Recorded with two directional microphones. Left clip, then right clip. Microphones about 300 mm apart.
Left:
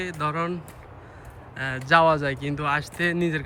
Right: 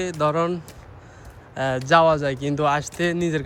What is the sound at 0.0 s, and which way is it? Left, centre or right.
Speech, centre.